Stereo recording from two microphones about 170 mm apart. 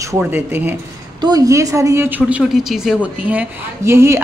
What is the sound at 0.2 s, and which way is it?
A woman's voice, 10° right (ahead or behind).